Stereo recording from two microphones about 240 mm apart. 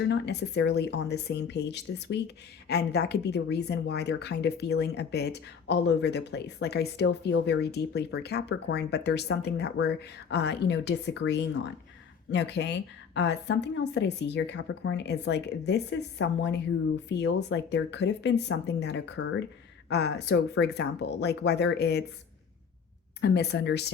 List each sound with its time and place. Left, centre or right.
0.1 s speech: left
23.2 s speech: left